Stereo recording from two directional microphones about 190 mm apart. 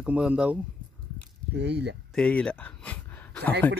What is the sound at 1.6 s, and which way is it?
Speech, 60° right (ahead or behind).